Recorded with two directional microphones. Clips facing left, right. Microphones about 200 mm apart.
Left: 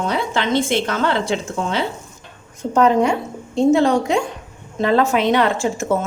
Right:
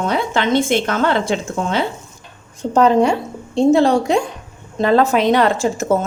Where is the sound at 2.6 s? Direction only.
30° right (ahead or behind).